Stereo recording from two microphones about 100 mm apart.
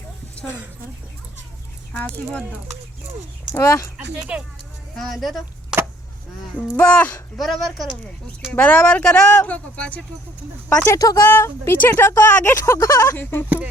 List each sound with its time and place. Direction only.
1.9 s speech: 10° left (ahead or behind)
3.5 s speech: 30° left (ahead or behind)
3.9 s speech: 10° right (ahead or behind)
4.9 s speech: centre (ahead or behind)
6.7 s speech: 15° left (ahead or behind)
7.3 s speech: centre (ahead or behind)
8.5 s speech: 15° left (ahead or behind)
10.7 s speech: 35° left (ahead or behind)